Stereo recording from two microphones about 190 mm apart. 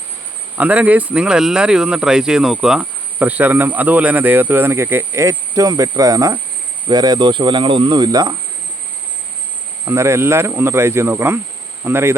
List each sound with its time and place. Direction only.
0.5 s speech: 10° right (ahead or behind)
9.8 s speech: 15° right (ahead or behind)